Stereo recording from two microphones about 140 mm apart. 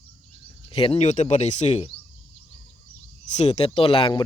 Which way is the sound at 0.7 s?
45° left (ahead or behind).